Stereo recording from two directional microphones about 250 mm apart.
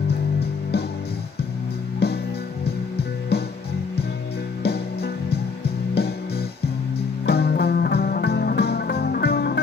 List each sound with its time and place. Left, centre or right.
0.4 s music: left
2.0 s music: left
3.3 s music: left
4.6 s music: left